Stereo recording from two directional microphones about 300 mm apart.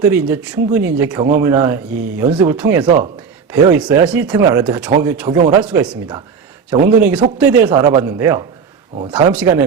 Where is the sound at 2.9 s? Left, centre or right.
Right.